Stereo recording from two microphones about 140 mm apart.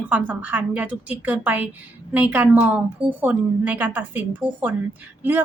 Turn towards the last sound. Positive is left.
turn(degrees=-15)  # may be behind; listen again after turning